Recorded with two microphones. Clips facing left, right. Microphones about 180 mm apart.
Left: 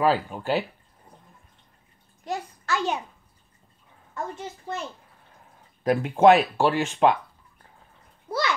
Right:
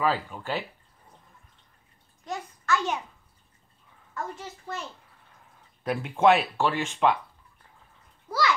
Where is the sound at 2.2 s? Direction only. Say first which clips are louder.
Left 1 dB; 35° left (ahead or behind).